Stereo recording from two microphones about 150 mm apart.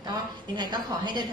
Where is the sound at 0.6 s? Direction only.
30° right (ahead or behind).